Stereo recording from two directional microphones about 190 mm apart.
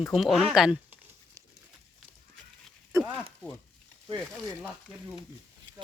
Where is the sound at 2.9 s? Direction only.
15° right (ahead or behind).